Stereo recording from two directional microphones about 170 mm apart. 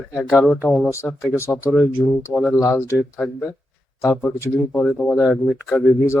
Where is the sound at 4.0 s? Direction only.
15° left (ahead or behind).